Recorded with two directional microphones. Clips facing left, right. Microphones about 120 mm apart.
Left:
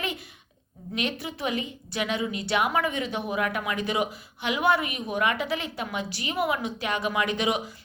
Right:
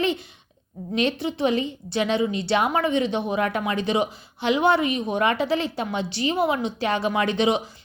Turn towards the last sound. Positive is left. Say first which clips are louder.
# right 5 dB
turn(degrees=-25)  # may be behind; listen again after turning